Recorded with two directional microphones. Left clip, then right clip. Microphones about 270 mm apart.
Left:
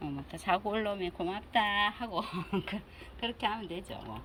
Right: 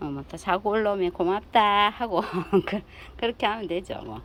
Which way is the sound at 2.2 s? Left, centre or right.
Right.